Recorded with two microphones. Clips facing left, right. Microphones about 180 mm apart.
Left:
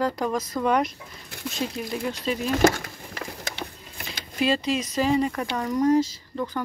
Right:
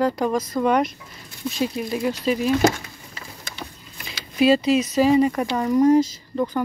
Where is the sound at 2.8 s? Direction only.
65° left (ahead or behind).